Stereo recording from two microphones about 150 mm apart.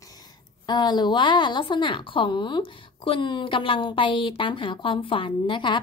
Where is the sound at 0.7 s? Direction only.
25° left (ahead or behind).